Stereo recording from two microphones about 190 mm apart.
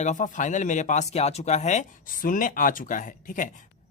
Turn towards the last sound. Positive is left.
turn(degrees=45)  # may be behind; listen again after turning